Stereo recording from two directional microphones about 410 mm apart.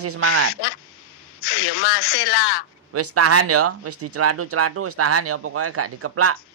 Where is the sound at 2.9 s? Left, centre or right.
Right.